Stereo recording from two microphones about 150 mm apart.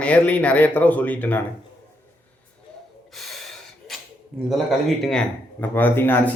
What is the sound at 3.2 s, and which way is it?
Gasp, centre (ahead or behind).